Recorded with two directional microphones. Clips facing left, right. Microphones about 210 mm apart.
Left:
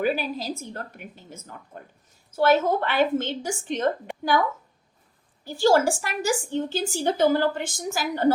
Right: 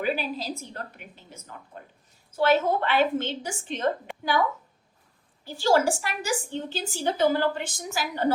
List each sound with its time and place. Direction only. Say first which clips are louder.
0.0 s a woman's voice: left 3 dB; 45° left (ahead or behind)
5.5 s a woman's voice: left 3 dB; 45° left (ahead or behind)